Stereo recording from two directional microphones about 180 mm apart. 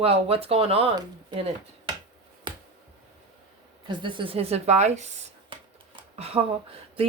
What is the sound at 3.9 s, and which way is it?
Speech, 25° right (ahead or behind).